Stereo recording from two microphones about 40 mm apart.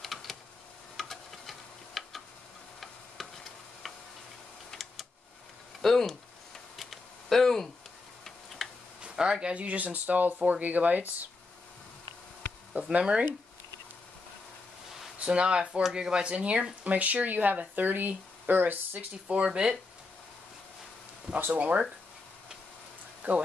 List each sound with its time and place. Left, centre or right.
0.0 s typing: centre
0.9 s tick-tock: centre
3.2 s stir: centre
3.8 s tick-tock: centre
4.7 s a sound: centre
5.8 s speech: centre
6.8 s a sound: centre
8.2 s tick-tock: centre
9.0 s speech: centre; by 11.2 s right
12.9 s speech: right
15.1 s speech: right
19.2 s speech: right
21.5 s speech: right
23.2 s speech: right